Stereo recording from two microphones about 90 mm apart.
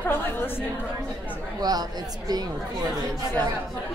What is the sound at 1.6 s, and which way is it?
Speech, 50° right (ahead or behind).